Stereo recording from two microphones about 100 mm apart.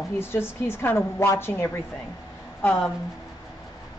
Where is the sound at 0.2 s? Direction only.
25° left (ahead or behind).